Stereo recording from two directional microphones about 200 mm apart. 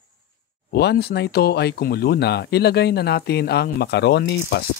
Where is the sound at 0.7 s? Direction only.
55° left (ahead or behind).